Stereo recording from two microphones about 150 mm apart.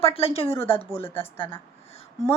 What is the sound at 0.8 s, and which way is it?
Speech, 15° left (ahead or behind).